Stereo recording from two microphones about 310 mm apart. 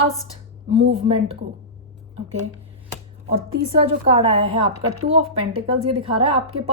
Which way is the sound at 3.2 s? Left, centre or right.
Centre.